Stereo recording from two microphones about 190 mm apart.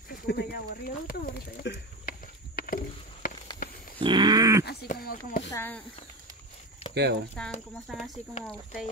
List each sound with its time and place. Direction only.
0.3 s a sound: 55° left (ahead or behind)
4.0 s dog: 25° right (ahead or behind)
4.6 s a sound: 55° left (ahead or behind)
5.5 s speech: 10° left (ahead or behind)
6.9 s speech: 60° right (ahead or behind)
7.4 s speech: 5° left (ahead or behind)